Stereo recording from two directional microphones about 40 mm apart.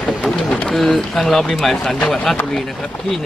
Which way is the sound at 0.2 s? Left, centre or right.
Centre.